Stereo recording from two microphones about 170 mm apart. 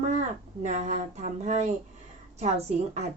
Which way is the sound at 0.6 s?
45° right (ahead or behind).